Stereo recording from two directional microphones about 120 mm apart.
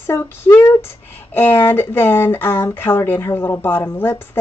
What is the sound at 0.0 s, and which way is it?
Speech, 20° left (ahead or behind).